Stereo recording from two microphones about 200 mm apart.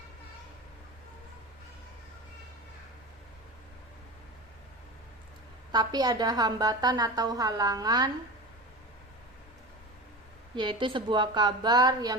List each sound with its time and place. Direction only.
5.7 s a woman's voice: 20° right (ahead or behind)
10.5 s a woman's voice: 25° right (ahead or behind)